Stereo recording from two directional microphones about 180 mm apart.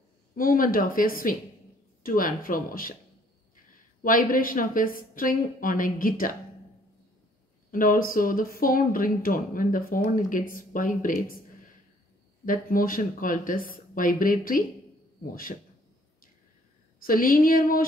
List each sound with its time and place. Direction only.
0.4 s speech: 50° left (ahead or behind)
4.0 s speech: 50° left (ahead or behind)
7.7 s speech: 50° left (ahead or behind)
12.4 s speech: 50° left (ahead or behind)
17.0 s speech: 50° left (ahead or behind)